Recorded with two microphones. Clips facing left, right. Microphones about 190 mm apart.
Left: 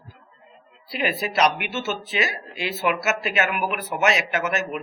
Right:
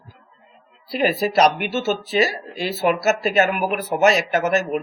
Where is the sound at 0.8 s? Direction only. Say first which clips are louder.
Right 6 dB; 40° right (ahead or behind).